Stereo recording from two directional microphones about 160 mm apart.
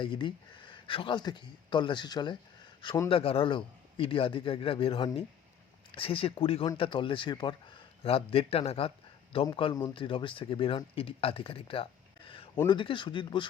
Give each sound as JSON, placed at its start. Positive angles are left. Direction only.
{"t": 0.0, "sound": "speech", "side_deg": 30}
{"t": 3.1, "sound": "speech", "side_deg": 35}